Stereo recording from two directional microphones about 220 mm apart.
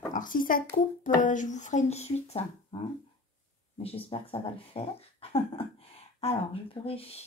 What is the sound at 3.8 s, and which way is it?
Speech, 25° left (ahead or behind).